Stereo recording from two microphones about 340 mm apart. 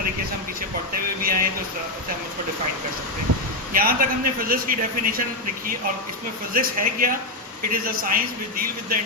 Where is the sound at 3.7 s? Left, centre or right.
Right.